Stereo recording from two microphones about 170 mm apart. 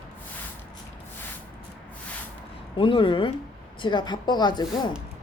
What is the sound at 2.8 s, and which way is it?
Speech, 30° left (ahead or behind).